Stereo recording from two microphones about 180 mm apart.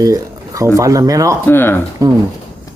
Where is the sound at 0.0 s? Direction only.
20° right (ahead or behind).